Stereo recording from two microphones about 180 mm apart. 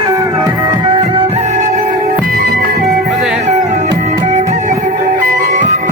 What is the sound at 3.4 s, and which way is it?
Music, 40° right (ahead or behind).